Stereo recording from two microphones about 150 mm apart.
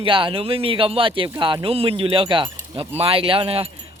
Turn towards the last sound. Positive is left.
turn(degrees=-40)  # may be behind; listen again after turning